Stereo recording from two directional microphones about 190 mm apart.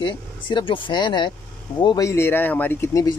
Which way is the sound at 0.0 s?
25° left (ahead or behind).